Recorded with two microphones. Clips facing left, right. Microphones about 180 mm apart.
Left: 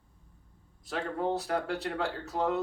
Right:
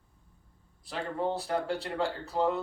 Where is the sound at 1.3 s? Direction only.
30° right (ahead or behind).